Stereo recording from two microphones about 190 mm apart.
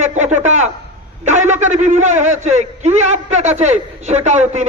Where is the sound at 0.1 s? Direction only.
40° right (ahead or behind).